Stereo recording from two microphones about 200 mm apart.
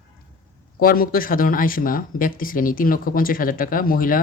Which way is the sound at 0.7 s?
45° left (ahead or behind).